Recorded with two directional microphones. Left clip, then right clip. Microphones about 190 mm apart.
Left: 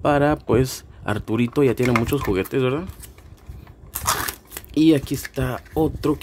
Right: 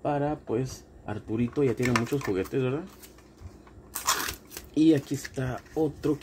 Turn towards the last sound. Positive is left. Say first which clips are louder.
# left 6 dB
turn(degrees=30)  # may be behind; listen again after turning